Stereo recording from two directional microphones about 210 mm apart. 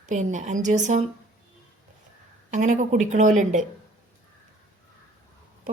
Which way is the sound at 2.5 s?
35° right (ahead or behind).